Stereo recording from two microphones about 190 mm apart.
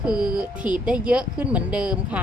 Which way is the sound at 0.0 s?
5° right (ahead or behind).